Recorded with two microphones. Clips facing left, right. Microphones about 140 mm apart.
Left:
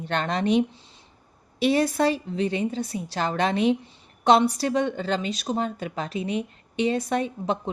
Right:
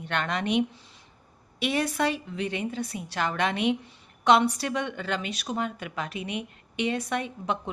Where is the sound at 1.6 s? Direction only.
35° left (ahead or behind).